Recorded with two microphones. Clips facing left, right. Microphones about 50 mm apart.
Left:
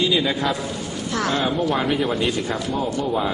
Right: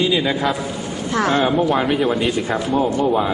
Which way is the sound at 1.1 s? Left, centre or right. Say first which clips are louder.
Right 5 dB; right.